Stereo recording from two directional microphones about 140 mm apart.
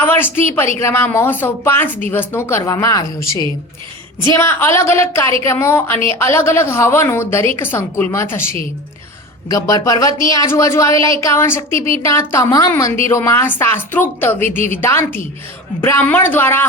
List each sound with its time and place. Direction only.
0.0 s speech: 15° left (ahead or behind)
4.3 s a woman's voice: 20° left (ahead or behind)
9.5 s a woman's voice: 25° left (ahead or behind)